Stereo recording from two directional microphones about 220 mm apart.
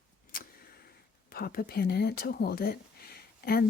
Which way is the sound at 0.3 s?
40° left (ahead or behind).